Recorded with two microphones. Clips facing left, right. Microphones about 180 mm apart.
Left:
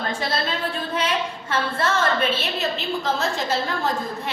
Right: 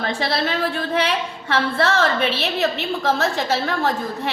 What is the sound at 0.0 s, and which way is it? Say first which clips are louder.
A woman's voice: right 3 dB; 70° right (ahead or behind).